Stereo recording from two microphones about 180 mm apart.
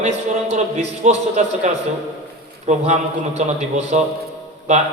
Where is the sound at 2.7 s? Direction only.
40° right (ahead or behind).